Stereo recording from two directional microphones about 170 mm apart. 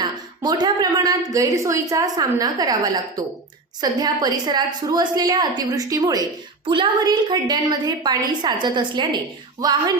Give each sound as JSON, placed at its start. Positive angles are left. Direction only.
{"t": 0.0, "sound": "a woman's voice", "side_deg": -25}